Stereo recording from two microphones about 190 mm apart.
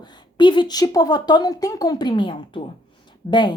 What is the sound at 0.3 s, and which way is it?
A woman's voice, 25° left (ahead or behind).